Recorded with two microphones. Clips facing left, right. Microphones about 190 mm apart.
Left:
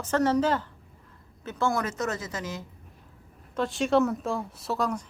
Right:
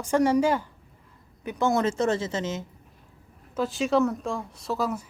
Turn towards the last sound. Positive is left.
turn(degrees=-5)  # may be behind; listen again after turning